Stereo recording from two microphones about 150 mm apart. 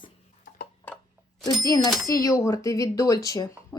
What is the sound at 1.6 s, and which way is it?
Speech, 25° left (ahead or behind).